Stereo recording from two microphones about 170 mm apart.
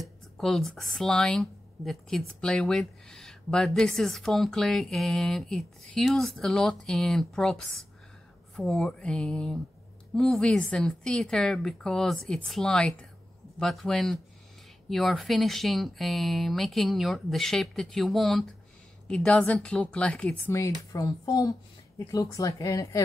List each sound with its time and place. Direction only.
0.0 s speech: centre (ahead or behind)
20.9 s a woman's voice: 20° left (ahead or behind)